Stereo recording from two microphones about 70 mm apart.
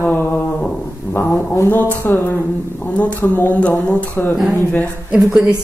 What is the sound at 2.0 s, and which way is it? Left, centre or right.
Speech, left.